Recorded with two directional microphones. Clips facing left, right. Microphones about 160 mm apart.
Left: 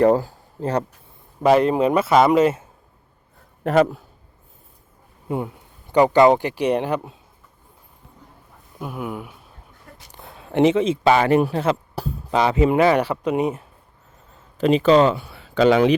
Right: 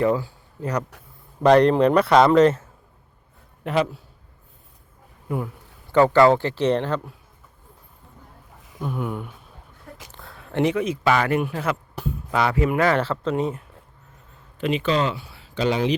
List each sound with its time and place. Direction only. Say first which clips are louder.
0.0 s speech: left 5 dB; 40° left (ahead or behind)
0.6 s speech: left 4 dB; 30° left (ahead or behind)
1.4 s speech: right 1 dB; 5° left (ahead or behind)
3.6 s a man's voice: left 6 dB; 45° left (ahead or behind)
5.9 s speech: left 1 dB; 15° left (ahead or behind)
8.8 s speech: right 1 dB; 5° left (ahead or behind)
10.1 s speech: left 7 dB; 20° left (ahead or behind)
14.6 s speech: left 8 dB; 40° left (ahead or behind); by 16.0 s 60° left (ahead or behind)